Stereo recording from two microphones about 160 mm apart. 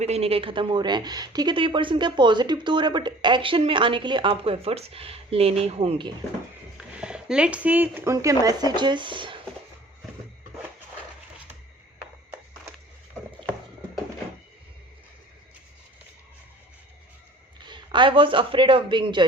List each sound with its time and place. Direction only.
0.0 s a woman's voice: 40° right (ahead or behind)
6.7 s speech: 5° right (ahead or behind); by 9.4 s 30° right (ahead or behind)
17.6 s speech: 30° right (ahead or behind)